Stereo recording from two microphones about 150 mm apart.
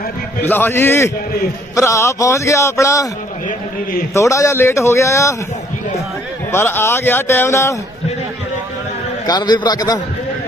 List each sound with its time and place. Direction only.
0.4 s a man's voice: 15° left (ahead or behind)
4.1 s a man's voice: 20° left (ahead or behind)
6.5 s speech: 15° left (ahead or behind)
9.2 s a man's voice: 25° left (ahead or behind)